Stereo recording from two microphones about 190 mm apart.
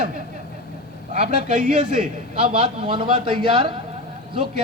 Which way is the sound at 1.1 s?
35° right (ahead or behind).